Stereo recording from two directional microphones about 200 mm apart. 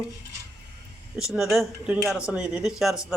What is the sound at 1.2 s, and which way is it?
Speech, 5° right (ahead or behind).